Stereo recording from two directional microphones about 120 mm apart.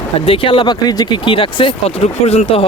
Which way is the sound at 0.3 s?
45° left (ahead or behind).